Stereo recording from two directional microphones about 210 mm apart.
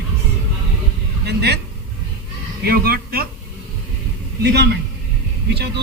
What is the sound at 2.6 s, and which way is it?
Speech, 45° right (ahead or behind).